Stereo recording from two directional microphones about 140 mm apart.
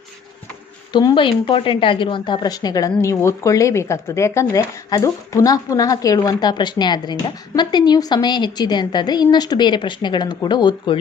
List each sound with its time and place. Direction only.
0.9 s a woman's voice: 35° left (ahead or behind)